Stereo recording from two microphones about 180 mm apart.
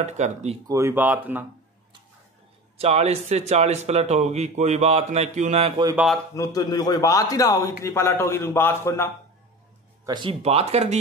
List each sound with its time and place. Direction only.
0.0 s speech: 40° right (ahead or behind)
0.7 s speech: 15° right (ahead or behind)
2.8 s speech: 35° right (ahead or behind)
6.3 s a man's voice: 20° left (ahead or behind)
10.0 s speech: 25° right (ahead or behind)